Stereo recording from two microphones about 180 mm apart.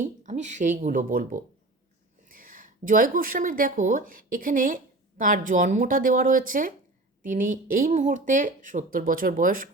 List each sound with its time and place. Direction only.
0.0 s speech: 45° right (ahead or behind)